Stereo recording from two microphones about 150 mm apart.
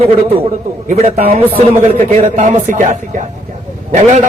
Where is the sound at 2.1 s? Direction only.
55° right (ahead or behind).